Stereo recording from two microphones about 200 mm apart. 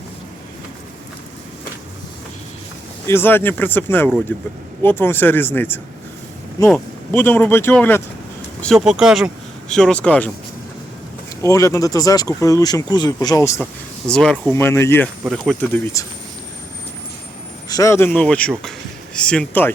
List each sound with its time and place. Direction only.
3.1 s speech: 10° left (ahead or behind)
11.4 s speech: 15° left (ahead or behind)
14.1 s speech: 5° left (ahead or behind)
15.2 s speech: centre (ahead or behind)
15.7 s speech: 15° left (ahead or behind)
17.7 s speech: 15° left (ahead or behind)